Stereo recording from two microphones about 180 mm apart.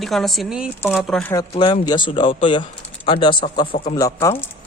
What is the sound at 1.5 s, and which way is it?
Speech, 30° left (ahead or behind).